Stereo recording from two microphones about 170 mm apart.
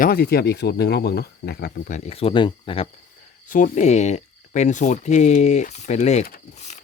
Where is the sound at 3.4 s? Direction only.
50° left (ahead or behind).